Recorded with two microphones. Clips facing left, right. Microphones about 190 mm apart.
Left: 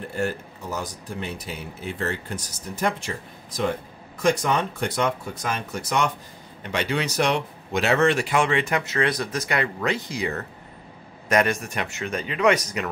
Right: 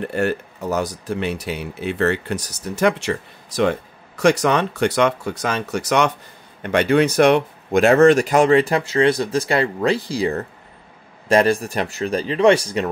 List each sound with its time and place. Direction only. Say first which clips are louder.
0.0 s speech: right 6 dB; 70° right (ahead or behind)
6.6 s speech: right 10 dB; 55° right (ahead or behind); by 12.8 s 30° right (ahead or behind)